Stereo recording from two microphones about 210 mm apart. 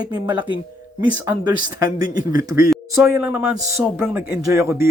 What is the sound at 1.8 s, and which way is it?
Speech, 15° right (ahead or behind).